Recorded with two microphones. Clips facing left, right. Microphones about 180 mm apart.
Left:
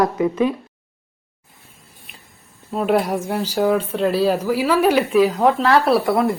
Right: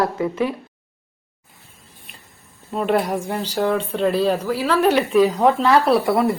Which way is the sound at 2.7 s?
Centre (ahead or behind).